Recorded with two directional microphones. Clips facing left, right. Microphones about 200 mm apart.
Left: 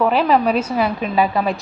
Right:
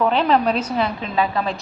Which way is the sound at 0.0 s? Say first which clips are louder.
Left 2 dB; 5° left (ahead or behind).